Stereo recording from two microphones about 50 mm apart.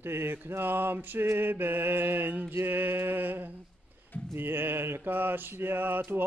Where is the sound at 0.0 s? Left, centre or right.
Right.